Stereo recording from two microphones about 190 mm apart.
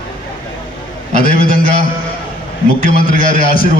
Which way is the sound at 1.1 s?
50° left (ahead or behind).